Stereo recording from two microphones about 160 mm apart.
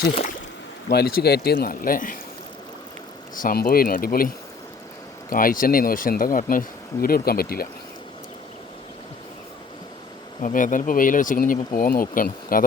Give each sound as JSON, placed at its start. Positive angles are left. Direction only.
{"t": 0.9, "sound": "speech", "side_deg": 80}
{"t": 3.3, "sound": "speech", "side_deg": 65}
{"t": 5.3, "sound": "speech", "side_deg": 60}
{"t": 10.4, "sound": "speech", "side_deg": 55}